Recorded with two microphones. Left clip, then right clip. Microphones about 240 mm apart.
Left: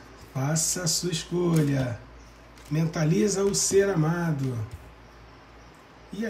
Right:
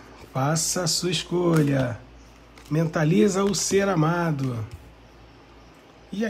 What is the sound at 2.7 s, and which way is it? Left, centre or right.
Speech, centre.